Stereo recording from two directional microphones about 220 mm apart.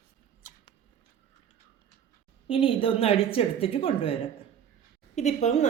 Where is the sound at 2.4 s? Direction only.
25° left (ahead or behind).